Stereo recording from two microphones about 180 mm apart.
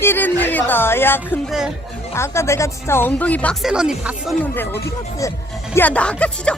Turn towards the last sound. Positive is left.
turn(degrees=5)  # may be behind; listen again after turning